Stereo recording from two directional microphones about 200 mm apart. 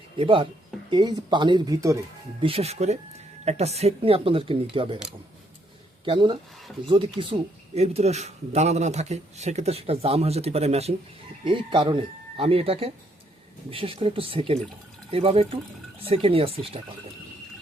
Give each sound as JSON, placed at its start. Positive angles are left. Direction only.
{"t": 0.2, "sound": "speech", "side_deg": -25}
{"t": 2.4, "sound": "speech", "side_deg": -30}
{"t": 6.1, "sound": "speech", "side_deg": -25}